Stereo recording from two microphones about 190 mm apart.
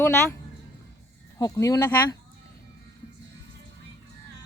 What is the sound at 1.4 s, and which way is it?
Speech, 15° left (ahead or behind).